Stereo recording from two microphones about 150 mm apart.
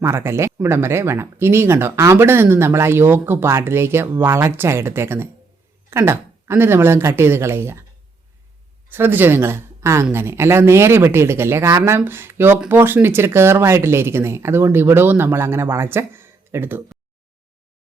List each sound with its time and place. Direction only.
0.0 s speech: 15° right (ahead or behind)
8.9 s speech: 15° right (ahead or behind)